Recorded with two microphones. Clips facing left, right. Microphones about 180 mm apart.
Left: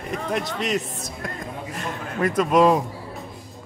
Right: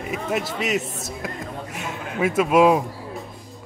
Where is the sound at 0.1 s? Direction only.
5° right (ahead or behind).